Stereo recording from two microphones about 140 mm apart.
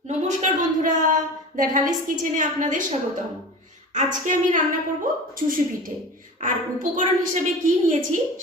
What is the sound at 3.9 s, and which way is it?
A woman's voice, 65° right (ahead or behind).